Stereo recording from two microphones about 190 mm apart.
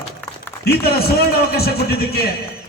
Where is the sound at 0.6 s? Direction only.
55° left (ahead or behind).